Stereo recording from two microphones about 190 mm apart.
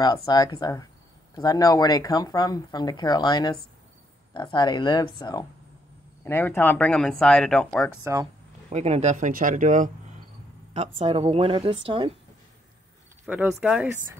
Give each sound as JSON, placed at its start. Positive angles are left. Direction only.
{"t": 0.0, "sound": "speech", "side_deg": 25}
{"t": 8.0, "sound": "speech", "side_deg": -15}
{"t": 8.6, "sound": "speech", "side_deg": -35}
{"t": 11.0, "sound": "a woman's voice", "side_deg": -30}
{"t": 13.2, "sound": "speech", "side_deg": -5}